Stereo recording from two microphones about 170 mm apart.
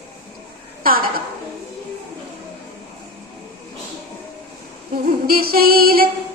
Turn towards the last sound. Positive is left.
turn(degrees=-60)  # may be behind; listen again after turning